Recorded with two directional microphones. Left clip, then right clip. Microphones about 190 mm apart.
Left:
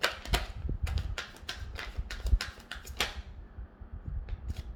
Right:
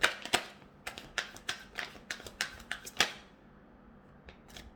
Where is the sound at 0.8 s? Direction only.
15° right (ahead or behind).